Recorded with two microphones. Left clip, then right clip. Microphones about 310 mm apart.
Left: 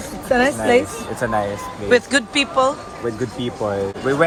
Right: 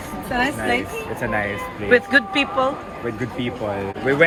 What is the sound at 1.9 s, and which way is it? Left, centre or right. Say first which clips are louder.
Speech: even; centre.